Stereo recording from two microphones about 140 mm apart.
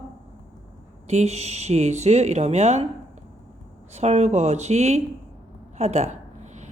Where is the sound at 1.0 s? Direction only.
50° right (ahead or behind).